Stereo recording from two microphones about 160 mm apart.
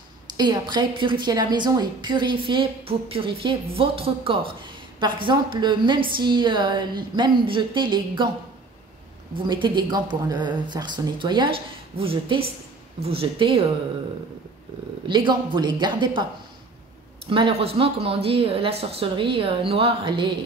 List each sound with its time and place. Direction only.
0.4 s a woman's voice: 25° right (ahead or behind)
9.5 s a woman's voice: 30° right (ahead or behind)
15.0 s a woman's voice: 30° right (ahead or behind)
17.3 s speech: 35° right (ahead or behind)